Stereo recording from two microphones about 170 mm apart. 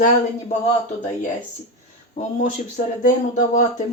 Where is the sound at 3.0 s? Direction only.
50° left (ahead or behind).